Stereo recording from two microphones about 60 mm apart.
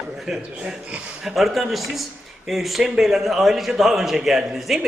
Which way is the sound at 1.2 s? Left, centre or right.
Centre.